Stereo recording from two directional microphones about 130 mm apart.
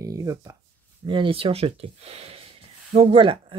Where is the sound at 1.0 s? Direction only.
40° right (ahead or behind).